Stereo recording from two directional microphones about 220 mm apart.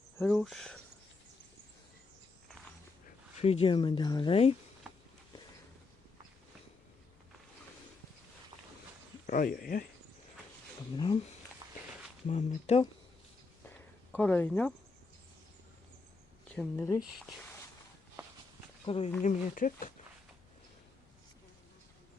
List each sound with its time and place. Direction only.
0.2 s speech: centre (ahead or behind)
3.4 s speech: 25° left (ahead or behind)
9.2 s speech: 40° left (ahead or behind)
10.9 s speech: 20° left (ahead or behind)
12.3 s speech: 30° left (ahead or behind)
13.7 s a sound: 5° left (ahead or behind)
16.5 s speech: 10° left (ahead or behind)
17.0 s speech: centre (ahead or behind)
18.9 s speech: 25° left (ahead or behind)